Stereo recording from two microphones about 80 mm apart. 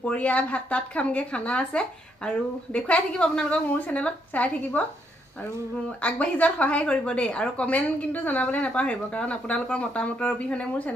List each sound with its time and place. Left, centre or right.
0.0 s speech: centre
6.0 s speech: centre